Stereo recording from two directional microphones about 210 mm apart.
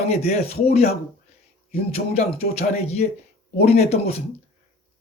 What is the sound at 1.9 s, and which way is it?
A man's voice, 30° left (ahead or behind).